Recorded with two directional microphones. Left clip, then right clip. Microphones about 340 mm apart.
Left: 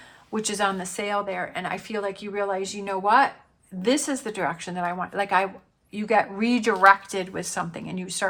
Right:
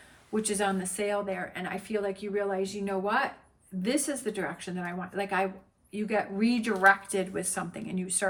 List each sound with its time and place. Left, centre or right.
0.3 s a woman's voice: centre